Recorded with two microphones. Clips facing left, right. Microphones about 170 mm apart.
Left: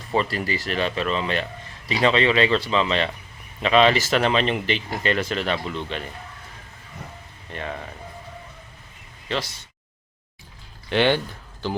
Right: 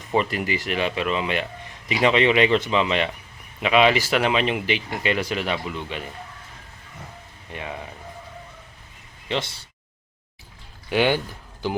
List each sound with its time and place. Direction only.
0.1 s speech: 15° right (ahead or behind)
7.5 s speech: 10° right (ahead or behind)
9.3 s speech: 30° right (ahead or behind)
10.8 s speech: 10° right (ahead or behind)